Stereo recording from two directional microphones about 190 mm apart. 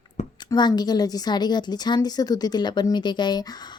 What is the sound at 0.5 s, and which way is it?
Speech, 20° left (ahead or behind).